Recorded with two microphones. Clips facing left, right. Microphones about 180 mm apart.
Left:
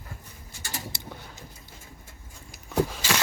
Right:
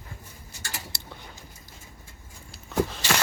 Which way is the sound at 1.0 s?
15° left (ahead or behind).